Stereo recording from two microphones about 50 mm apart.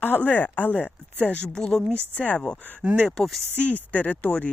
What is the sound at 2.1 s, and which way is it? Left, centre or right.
Speech, left.